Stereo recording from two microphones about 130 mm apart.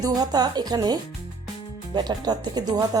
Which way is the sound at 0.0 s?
30° right (ahead or behind).